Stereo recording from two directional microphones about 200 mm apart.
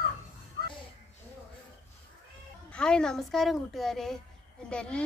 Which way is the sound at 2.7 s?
5° left (ahead or behind).